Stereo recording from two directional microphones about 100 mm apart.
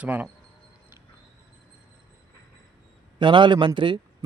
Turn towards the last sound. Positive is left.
turn(degrees=-55)  # may be behind; listen again after turning